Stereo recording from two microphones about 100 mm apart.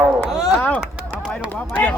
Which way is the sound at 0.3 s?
5° right (ahead or behind).